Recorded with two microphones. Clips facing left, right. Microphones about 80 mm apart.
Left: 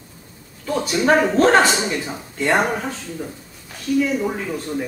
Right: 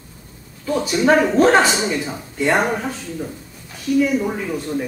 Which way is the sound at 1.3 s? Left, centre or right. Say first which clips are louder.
Right 1 dB; centre.